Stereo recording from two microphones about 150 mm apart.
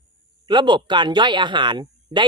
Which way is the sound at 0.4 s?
30° right (ahead or behind).